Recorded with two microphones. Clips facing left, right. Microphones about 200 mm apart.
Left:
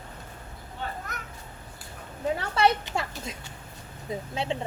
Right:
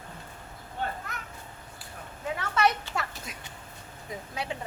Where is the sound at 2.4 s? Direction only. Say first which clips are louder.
Left 1 dB; 30° left (ahead or behind).